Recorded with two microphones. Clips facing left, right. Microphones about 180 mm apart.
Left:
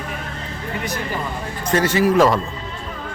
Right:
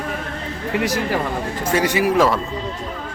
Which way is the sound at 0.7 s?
90° right.